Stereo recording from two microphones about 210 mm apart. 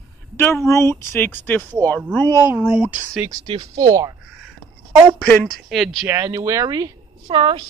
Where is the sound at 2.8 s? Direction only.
10° right (ahead or behind).